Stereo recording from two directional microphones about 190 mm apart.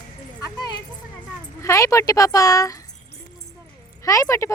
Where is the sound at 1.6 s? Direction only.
15° left (ahead or behind).